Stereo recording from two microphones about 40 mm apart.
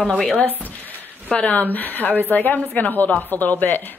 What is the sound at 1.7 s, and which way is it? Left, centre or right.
A woman's voice, left.